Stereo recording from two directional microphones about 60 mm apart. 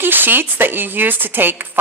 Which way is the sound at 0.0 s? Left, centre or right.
Right.